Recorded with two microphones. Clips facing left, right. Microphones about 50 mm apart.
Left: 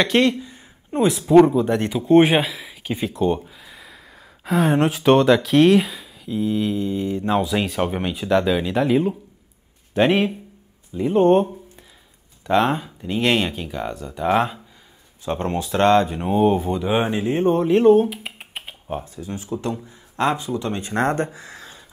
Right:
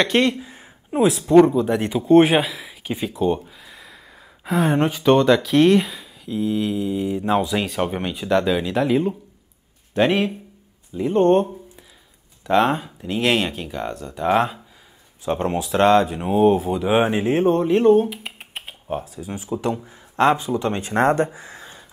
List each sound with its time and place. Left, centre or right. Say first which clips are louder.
0.4 s a sound: left 1 dB; centre
0.9 s speech: even; centre
2.6 s a sound: left 1 dB; centre
4.5 s speech: left 1 dB; centre
7.6 s speech: left 1 dB; centre
17.1 s speech: right 2 dB; right
17.5 s speech: left 2 dB; centre
17.9 s computer keyboard: left 1 dB; centre
19.1 s speech: right 1 dB; centre